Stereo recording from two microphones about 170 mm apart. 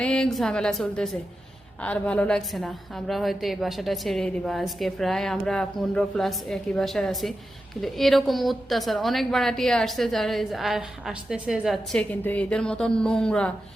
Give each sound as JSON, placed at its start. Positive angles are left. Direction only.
{"t": 0.0, "sound": "a woman's voice", "side_deg": 5}